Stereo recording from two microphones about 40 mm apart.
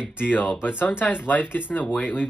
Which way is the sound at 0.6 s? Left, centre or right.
Left.